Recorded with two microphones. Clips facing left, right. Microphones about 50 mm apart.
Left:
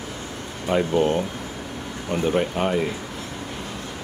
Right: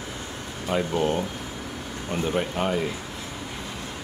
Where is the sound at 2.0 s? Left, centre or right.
Centre.